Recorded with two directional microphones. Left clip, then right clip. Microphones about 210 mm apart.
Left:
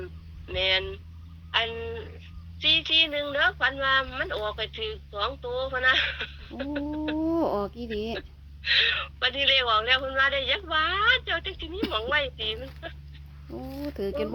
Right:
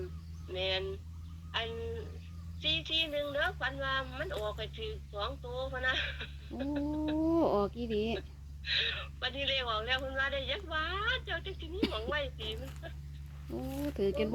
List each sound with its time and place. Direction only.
0.4 s speech: 45° left (ahead or behind)
7.3 s speech: 10° left (ahead or behind)
8.6 s speech: 45° left (ahead or behind)
13.5 s speech: 10° left (ahead or behind)